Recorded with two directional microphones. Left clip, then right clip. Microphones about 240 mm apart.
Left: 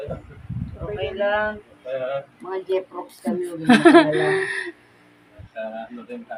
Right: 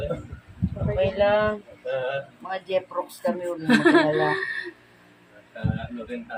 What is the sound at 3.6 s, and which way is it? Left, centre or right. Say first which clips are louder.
A woman's voice: left 5 dB; left.